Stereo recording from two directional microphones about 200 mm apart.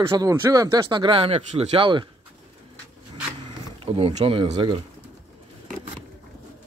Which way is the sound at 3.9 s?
25° right (ahead or behind).